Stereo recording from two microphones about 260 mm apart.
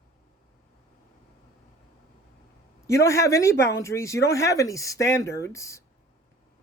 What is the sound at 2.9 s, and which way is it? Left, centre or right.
Speech, centre.